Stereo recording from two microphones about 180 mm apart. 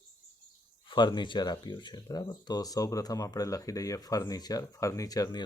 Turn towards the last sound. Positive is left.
turn(degrees=25)  # may be behind; listen again after turning